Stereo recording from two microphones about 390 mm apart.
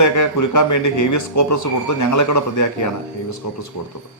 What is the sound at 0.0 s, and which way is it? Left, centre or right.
Speech, left.